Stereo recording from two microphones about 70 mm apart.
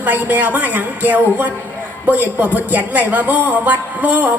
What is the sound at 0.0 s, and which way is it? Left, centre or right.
Speech, right.